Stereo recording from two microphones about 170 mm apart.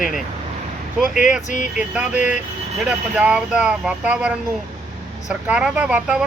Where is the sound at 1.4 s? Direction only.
45° left (ahead or behind).